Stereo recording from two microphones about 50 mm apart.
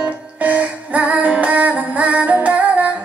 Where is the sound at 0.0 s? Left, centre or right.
Right.